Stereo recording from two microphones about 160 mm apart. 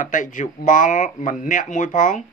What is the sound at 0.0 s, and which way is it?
Speech, 55° left (ahead or behind).